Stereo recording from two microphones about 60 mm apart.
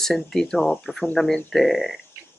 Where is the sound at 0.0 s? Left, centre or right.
Centre.